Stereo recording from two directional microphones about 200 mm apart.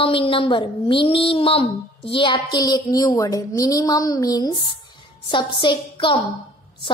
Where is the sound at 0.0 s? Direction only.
25° left (ahead or behind).